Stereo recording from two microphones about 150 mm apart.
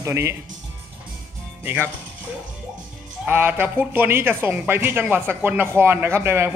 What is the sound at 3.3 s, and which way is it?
Speech, 15° right (ahead or behind).